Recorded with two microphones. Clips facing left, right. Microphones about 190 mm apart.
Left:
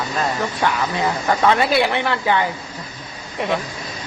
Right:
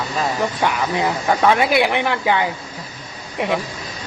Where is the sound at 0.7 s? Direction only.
15° right (ahead or behind).